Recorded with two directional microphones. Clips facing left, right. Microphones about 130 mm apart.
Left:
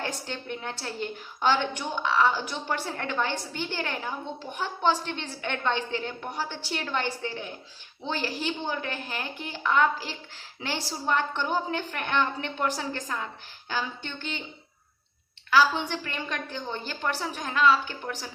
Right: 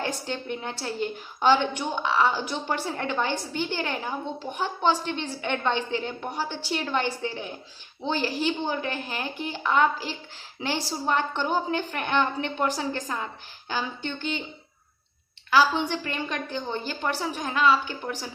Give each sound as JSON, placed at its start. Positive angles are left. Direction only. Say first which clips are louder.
{"t": 0.0, "sound": "a woman's voice", "louder": "right 3 dB", "side_deg": -15}
{"t": 15.4, "sound": "a woman's voice", "louder": "right 1 dB", "side_deg": -15}